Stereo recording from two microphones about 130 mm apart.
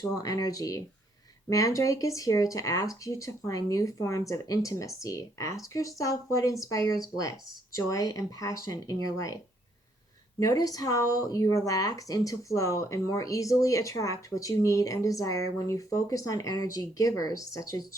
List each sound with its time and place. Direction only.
0.0 s speech: 30° left (ahead or behind)
10.4 s speech: 30° left (ahead or behind)